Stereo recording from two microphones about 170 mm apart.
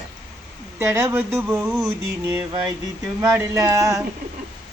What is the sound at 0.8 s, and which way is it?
A man's voice, 15° right (ahead or behind).